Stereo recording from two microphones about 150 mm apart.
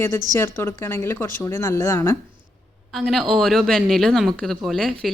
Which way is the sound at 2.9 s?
Centre (ahead or behind).